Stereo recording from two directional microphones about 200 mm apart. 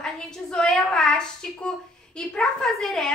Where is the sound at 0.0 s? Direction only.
5° left (ahead or behind).